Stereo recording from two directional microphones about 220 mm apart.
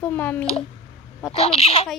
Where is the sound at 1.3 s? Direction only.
25° left (ahead or behind).